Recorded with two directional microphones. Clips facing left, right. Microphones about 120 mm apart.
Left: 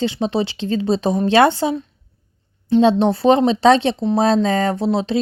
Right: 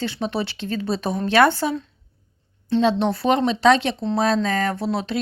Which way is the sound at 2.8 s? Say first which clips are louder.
Left 6 dB; 25° left (ahead or behind).